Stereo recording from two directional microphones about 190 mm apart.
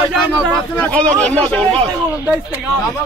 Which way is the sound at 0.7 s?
5° left (ahead or behind).